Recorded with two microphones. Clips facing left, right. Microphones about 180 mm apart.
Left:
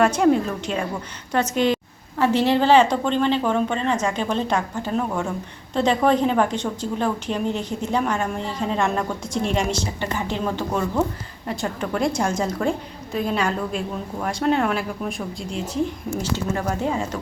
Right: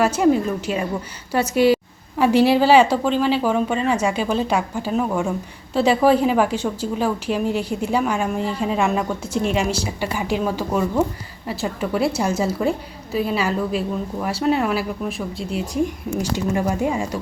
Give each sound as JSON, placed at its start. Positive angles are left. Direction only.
{"t": 0.0, "sound": "a woman's voice", "side_deg": -5}